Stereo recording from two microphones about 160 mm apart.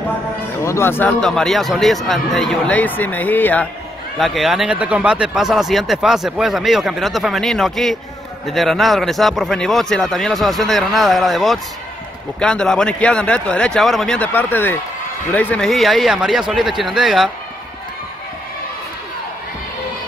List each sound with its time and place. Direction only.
0.7 s speech: 15° left (ahead or behind)
1.2 s speech: 5° left (ahead or behind)
4.2 s speech: centre (ahead or behind)